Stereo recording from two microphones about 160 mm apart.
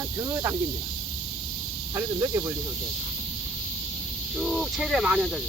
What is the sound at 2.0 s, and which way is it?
Speech, 20° right (ahead or behind).